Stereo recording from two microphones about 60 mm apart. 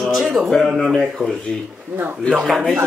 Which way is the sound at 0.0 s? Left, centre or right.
Centre.